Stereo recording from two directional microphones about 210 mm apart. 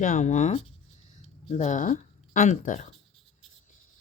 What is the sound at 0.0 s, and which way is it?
Speech, 35° left (ahead or behind).